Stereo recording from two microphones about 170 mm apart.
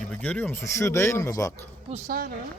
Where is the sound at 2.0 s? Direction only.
60° right (ahead or behind).